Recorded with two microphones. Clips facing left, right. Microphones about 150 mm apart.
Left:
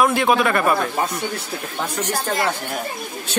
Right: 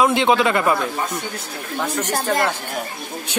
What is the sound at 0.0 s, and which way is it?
Speech, 20° right (ahead or behind).